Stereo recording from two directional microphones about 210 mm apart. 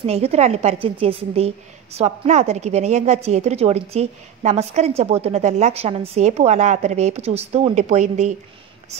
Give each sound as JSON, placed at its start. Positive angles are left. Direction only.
{"t": 0.0, "sound": "a woman's voice", "side_deg": -30}